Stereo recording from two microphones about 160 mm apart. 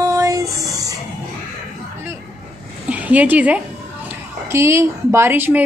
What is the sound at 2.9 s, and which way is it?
A woman's voice, 10° right (ahead or behind).